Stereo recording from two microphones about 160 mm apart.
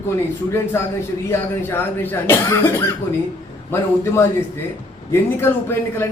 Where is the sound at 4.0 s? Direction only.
15° left (ahead or behind).